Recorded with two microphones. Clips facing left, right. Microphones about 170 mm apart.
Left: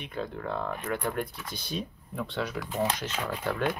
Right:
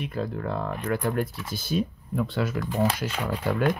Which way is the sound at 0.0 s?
5° right (ahead or behind).